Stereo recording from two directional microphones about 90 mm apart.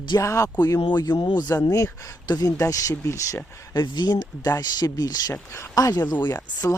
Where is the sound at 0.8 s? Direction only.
55° left (ahead or behind).